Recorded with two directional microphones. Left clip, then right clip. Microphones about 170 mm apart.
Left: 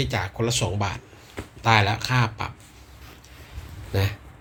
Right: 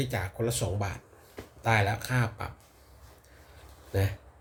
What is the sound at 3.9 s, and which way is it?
Speech, 15° right (ahead or behind).